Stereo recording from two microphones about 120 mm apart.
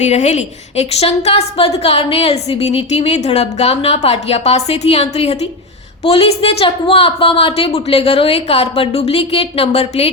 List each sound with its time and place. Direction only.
0.0 s a woman's voice: 70° left (ahead or behind)